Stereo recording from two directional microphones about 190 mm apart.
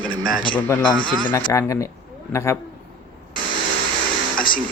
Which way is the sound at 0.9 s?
45° left (ahead or behind).